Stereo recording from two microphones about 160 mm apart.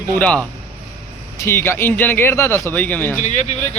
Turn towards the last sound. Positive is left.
turn(degrees=45)  # may be behind; listen again after turning